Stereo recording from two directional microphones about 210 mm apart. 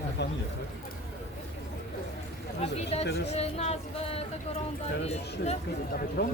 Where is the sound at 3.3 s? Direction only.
30° left (ahead or behind).